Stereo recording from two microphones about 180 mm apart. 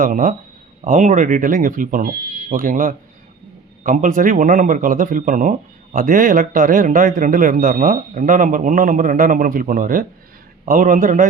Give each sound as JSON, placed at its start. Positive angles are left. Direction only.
{"t": 0.0, "sound": "speech", "side_deg": -50}